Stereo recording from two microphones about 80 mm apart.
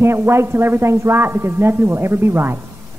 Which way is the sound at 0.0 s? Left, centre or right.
Right.